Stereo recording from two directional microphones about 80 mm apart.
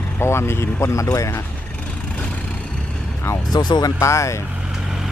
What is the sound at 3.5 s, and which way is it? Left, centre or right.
Speech, left.